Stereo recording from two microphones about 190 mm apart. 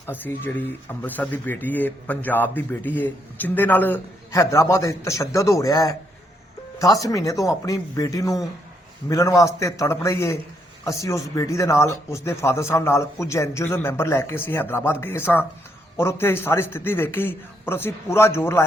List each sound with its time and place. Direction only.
0.1 s speech: 10° left (ahead or behind)